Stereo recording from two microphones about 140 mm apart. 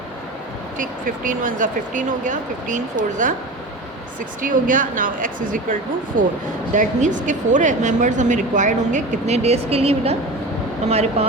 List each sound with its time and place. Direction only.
0.8 s speech: 75° right (ahead or behind)
4.4 s speech: 75° right (ahead or behind)
6.1 s speech: 75° right (ahead or behind)
6.7 s speech: 65° right (ahead or behind); by 11.3 s 50° right (ahead or behind)